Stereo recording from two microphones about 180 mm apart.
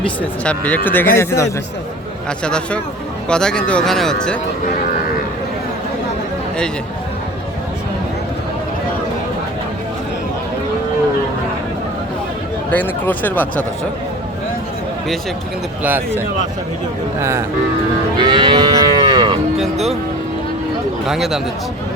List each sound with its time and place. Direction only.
0.2 s speech: 10° left (ahead or behind)
2.4 s speech: 5° left (ahead or behind)
12.7 s speech: 10° left (ahead or behind)
15.8 s a man's voice: 10° right (ahead or behind)
18.2 s moo: 25° right (ahead or behind)
21.1 s speech: centre (ahead or behind)